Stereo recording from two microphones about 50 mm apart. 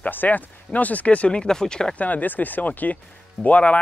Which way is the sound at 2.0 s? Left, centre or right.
Left.